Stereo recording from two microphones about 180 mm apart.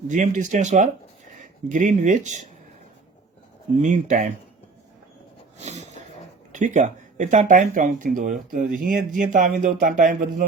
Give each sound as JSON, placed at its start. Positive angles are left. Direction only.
{"t": 0.1, "sound": "speech", "side_deg": -45}
{"t": 3.8, "sound": "speech", "side_deg": -40}
{"t": 5.5, "sound": "dog", "side_deg": -40}
{"t": 6.5, "sound": "speech", "side_deg": -40}